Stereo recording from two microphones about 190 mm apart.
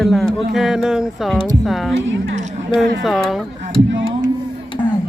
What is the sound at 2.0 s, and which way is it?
Speech, 80° right.